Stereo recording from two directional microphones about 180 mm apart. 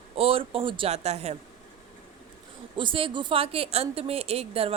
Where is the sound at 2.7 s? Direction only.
30° right (ahead or behind).